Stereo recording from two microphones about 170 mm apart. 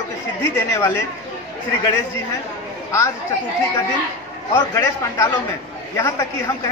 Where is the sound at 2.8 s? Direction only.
15° left (ahead or behind).